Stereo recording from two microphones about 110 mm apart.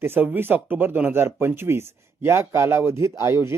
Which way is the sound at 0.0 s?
20° right (ahead or behind).